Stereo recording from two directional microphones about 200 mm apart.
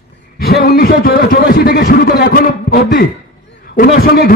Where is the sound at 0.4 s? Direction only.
50° left (ahead or behind).